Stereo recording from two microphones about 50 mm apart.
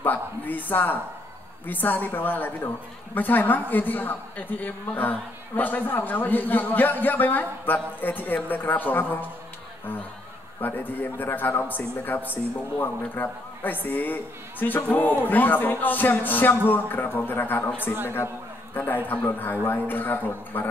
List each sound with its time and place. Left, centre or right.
0.0 s a sound: left
1.7 s a man's voice: left
10.6 s a man's voice: left
19.0 s a man's voice: left